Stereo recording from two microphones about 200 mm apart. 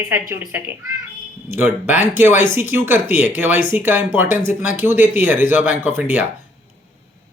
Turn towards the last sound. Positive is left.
turn(degrees=-10)  # may be behind; listen again after turning